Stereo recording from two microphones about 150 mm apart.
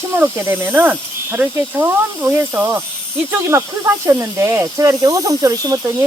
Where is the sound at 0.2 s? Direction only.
15° right (ahead or behind).